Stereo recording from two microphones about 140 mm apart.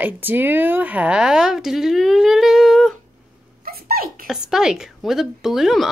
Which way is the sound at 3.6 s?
90° right.